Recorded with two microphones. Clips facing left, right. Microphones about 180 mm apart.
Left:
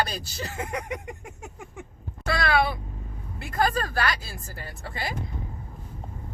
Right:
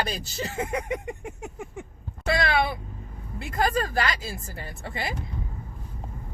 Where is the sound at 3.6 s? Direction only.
20° right (ahead or behind).